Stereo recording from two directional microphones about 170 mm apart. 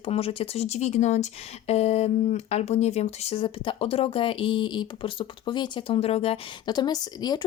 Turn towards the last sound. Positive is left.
turn(degrees=25)  # may be behind; listen again after turning